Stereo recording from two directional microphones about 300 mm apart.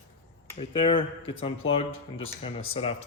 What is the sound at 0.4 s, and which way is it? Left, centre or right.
Speech, centre.